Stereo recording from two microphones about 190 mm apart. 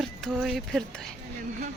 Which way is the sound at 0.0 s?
Centre (ahead or behind).